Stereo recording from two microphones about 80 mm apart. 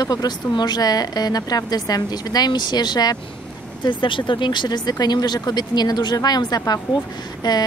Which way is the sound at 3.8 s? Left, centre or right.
Left.